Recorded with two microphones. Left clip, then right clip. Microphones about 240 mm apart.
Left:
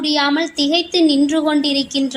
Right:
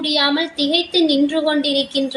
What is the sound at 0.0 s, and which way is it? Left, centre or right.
A woman's voice, left.